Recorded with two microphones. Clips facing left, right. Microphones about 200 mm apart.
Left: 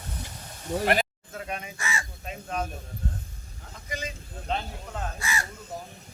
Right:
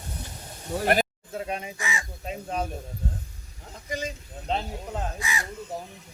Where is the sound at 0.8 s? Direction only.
40° right (ahead or behind).